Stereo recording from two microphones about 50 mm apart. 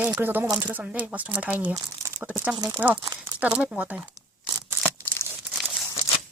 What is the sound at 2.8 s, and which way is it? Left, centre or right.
Speech, right.